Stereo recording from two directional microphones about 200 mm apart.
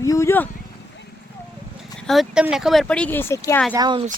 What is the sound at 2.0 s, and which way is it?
Speech, centre (ahead or behind).